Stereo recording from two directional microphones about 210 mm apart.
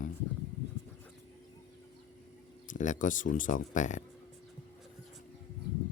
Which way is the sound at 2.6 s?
35° left (ahead or behind).